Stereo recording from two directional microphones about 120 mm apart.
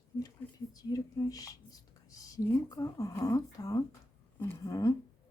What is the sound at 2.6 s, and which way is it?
Speech, 30° left (ahead or behind).